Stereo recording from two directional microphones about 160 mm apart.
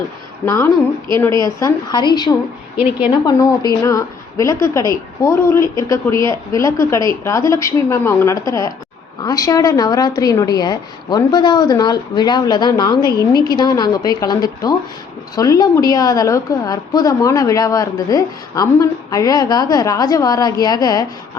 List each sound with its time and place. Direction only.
0.4 s a woman's voice: 15° left (ahead or behind)